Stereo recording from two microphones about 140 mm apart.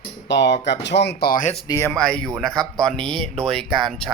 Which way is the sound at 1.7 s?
20° left (ahead or behind).